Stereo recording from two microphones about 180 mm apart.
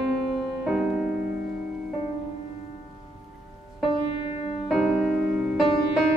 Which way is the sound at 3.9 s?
30° left (ahead or behind).